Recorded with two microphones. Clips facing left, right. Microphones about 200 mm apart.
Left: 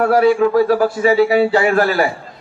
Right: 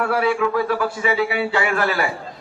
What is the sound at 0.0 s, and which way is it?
Speech, 40° left (ahead or behind).